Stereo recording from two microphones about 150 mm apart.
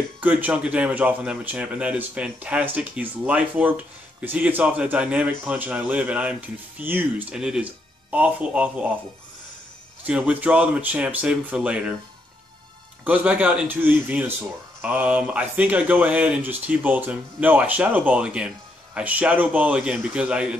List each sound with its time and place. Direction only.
0.2 s speech: 10° right (ahead or behind)
10.0 s speech: 10° right (ahead or behind)
13.0 s speech: 10° right (ahead or behind)